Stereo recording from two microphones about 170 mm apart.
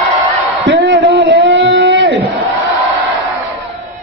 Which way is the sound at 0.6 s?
90° right.